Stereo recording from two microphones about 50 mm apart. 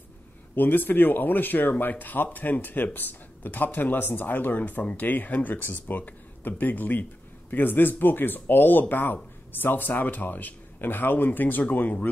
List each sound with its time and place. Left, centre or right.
0.6 s speech: left